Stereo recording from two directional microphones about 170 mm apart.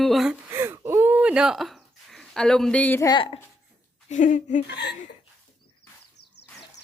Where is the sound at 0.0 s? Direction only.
Centre (ahead or behind).